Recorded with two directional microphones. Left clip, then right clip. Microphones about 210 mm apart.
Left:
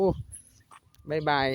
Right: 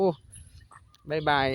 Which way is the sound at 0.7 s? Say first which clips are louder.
Even; 5° left (ahead or behind).